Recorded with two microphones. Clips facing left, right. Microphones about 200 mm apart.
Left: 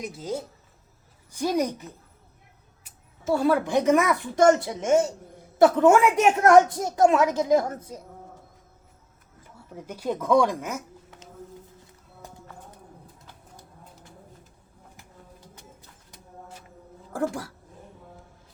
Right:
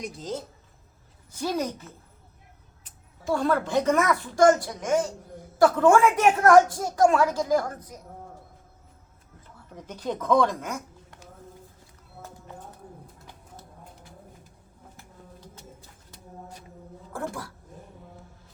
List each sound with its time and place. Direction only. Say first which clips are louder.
0.0 s speech: left 2 dB; 5° left (ahead or behind)
3.3 s a woman's voice: left 2 dB; 10° left (ahead or behind); by 8.0 s 25° left (ahead or behind)
9.4 s speech: left 3 dB; 10° left (ahead or behind)